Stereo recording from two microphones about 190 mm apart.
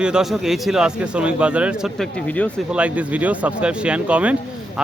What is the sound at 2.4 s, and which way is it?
Speech, 10° left (ahead or behind).